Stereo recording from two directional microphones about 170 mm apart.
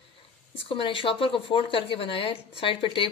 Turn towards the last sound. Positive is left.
turn(degrees=30)  # may be behind; listen again after turning